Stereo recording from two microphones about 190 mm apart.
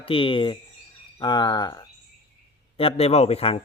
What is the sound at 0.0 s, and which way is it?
Speech, 30° left (ahead or behind).